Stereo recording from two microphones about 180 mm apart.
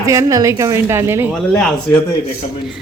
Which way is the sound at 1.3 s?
5° left (ahead or behind).